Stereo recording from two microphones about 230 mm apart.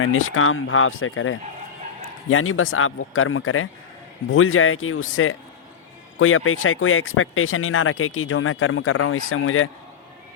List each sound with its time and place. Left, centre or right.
0.0 s speech: left